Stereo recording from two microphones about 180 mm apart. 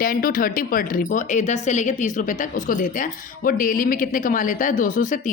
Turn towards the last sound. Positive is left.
turn(degrees=45)  # may be behind; listen again after turning